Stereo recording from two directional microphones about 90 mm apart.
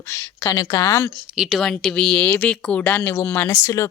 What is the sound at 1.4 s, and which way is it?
Speech, centre (ahead or behind).